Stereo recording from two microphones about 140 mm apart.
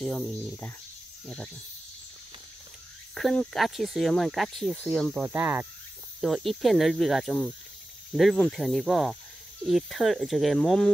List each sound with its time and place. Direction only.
0.0 s speech: 5° left (ahead or behind)
3.2 s speech: centre (ahead or behind)
5.3 s speech: 15° right (ahead or behind)
6.2 s speech: centre (ahead or behind)